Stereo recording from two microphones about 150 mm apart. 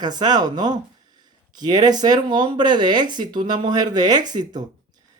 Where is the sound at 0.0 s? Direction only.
30° right (ahead or behind).